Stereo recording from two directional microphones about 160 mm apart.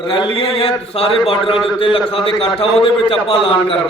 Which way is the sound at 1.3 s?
35° left (ahead or behind).